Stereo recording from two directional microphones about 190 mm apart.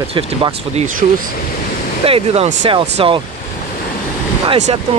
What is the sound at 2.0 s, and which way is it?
Speech, 30° right (ahead or behind).